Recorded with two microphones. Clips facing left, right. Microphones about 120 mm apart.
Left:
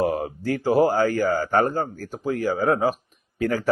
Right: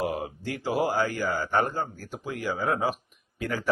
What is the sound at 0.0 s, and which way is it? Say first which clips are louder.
A man's voice: left 6 dB; 45° left (ahead or behind).